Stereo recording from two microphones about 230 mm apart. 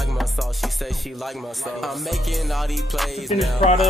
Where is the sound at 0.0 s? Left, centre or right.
Centre.